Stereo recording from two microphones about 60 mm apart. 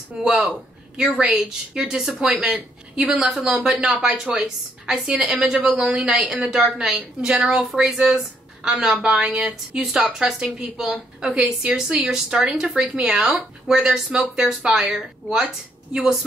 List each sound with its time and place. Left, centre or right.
0.2 s a woman's voice: centre
0.9 s a woman's voice: centre
1.2 s a woman's voice: centre
1.8 s a woman's voice: centre